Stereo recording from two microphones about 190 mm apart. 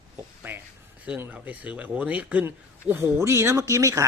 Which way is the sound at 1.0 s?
10° right (ahead or behind).